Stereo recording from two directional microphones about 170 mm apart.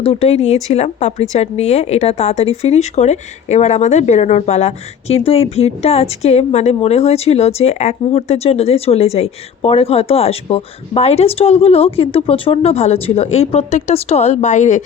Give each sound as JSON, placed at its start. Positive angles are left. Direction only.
{"t": 0.0, "sound": "speech", "side_deg": 35}